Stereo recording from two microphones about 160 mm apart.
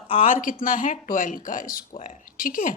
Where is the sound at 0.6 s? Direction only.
55° left (ahead or behind).